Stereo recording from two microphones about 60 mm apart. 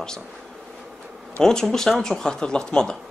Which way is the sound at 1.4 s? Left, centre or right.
Centre.